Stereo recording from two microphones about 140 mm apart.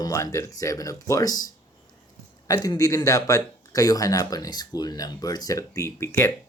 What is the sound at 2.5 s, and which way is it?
Speech, 25° left (ahead or behind).